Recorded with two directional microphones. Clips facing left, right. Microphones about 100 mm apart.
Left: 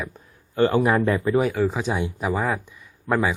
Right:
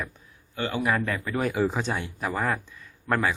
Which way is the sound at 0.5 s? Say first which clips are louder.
Left 8 dB; 40° left (ahead or behind).